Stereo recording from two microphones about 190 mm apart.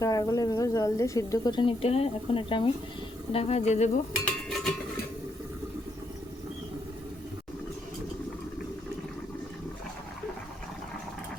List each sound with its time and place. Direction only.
0.0 s speech: 15° left (ahead or behind); by 3.8 s 35° left (ahead or behind)
4.4 s cutlery: centre (ahead or behind)